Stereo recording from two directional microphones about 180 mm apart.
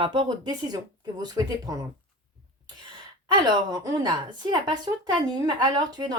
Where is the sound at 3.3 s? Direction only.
25° right (ahead or behind).